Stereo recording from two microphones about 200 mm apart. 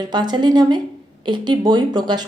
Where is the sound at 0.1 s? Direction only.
20° right (ahead or behind).